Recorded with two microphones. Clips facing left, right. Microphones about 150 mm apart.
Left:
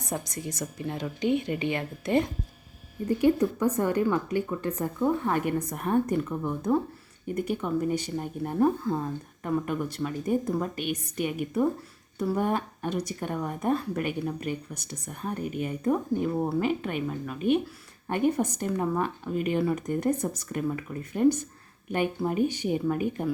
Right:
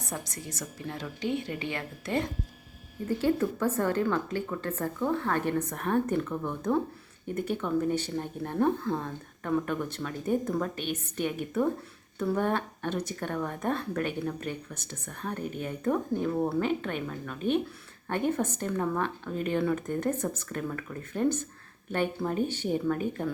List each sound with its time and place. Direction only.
0.0 s speech: 15° left (ahead or behind)